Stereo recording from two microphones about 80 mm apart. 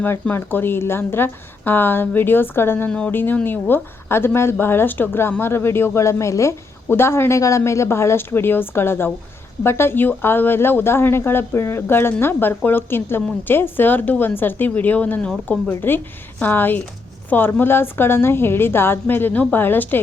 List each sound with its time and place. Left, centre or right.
0.0 s a woman's voice: left